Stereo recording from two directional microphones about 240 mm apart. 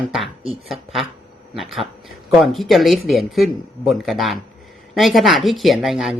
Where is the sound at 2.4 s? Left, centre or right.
Centre.